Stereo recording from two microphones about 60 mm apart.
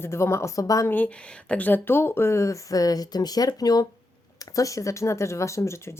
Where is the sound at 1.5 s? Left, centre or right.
Left.